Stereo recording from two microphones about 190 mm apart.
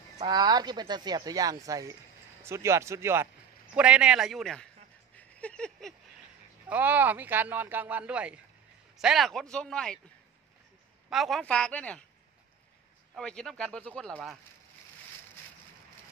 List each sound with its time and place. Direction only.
0.3 s speech: 20° right (ahead or behind); by 4.6 s centre (ahead or behind)
5.1 s a sound: 5° left (ahead or behind)
6.7 s speech: 10° right (ahead or behind)
11.1 s speech: centre (ahead or behind)
13.1 s speech: 5° left (ahead or behind)